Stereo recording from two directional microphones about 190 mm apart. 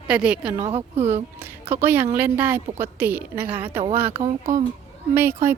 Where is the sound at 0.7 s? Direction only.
35° right (ahead or behind).